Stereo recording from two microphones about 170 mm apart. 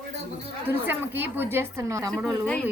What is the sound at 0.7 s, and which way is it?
A woman's voice, 10° right (ahead or behind).